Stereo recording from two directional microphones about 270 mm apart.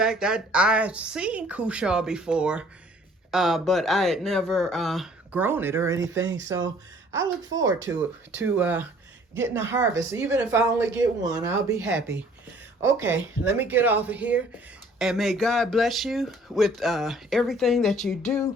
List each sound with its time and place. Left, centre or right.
0.0 s speech: centre
6.0 s speech: right
7.1 s speech: centre